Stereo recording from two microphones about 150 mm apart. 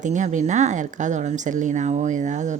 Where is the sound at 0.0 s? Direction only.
55° right (ahead or behind).